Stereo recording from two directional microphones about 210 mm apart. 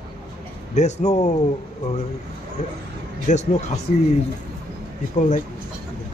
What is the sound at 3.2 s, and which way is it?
Speech, 35° left (ahead or behind).